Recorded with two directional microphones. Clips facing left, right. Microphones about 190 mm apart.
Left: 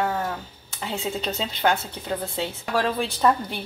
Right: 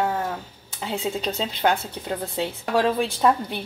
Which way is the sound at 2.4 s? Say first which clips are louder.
Right 5 dB; 15° right (ahead or behind).